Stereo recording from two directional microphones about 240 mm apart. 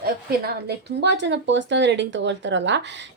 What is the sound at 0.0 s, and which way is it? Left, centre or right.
Speech, right.